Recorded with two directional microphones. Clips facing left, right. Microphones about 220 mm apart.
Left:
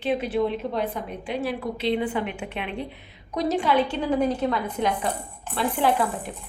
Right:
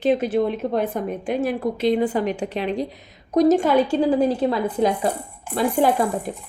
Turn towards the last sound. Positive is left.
turn(degrees=-40)  # may be behind; listen again after turning